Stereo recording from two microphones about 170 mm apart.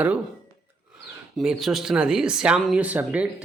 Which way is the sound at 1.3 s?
Centre (ahead or behind).